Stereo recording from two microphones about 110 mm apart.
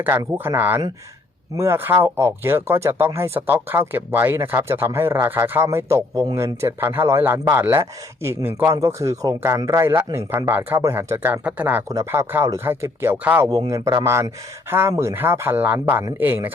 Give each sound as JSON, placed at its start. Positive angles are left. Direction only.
{"t": 0.0, "sound": "speech", "side_deg": -20}
{"t": 11.9, "sound": "speech", "side_deg": -25}
{"t": 13.5, "sound": "speech", "side_deg": -30}